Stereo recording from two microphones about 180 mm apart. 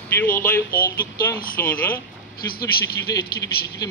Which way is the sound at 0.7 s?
55° left (ahead or behind).